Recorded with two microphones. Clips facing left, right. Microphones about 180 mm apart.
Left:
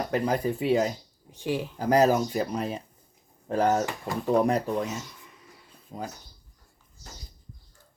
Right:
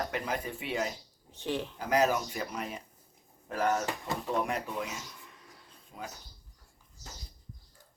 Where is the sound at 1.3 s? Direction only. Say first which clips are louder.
Left 4 dB; 10° left (ahead or behind).